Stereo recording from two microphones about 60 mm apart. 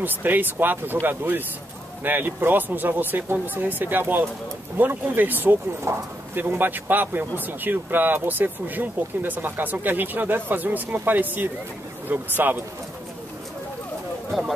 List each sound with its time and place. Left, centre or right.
0.0 s speech: right
5.9 s speech: right
6.3 s speech: right
14.3 s speech: centre